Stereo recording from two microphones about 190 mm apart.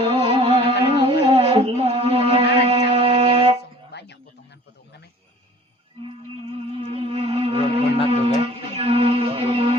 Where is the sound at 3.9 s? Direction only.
60° left (ahead or behind).